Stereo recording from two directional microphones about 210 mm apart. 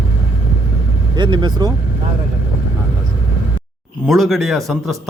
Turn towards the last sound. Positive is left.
turn(degrees=0)  # may be behind; listen again after turning